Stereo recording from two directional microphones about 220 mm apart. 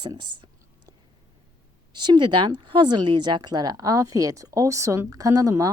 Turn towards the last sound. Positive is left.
turn(degrees=-15)  # may be behind; listen again after turning